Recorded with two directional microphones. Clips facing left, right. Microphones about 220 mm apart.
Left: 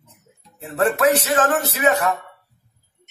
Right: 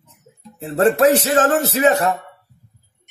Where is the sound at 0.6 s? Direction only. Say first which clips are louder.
Right 4 dB; 30° right (ahead or behind).